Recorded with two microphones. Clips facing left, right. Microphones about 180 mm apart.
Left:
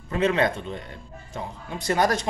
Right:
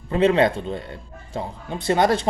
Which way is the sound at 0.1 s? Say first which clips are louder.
Right 5 dB; 30° right (ahead or behind).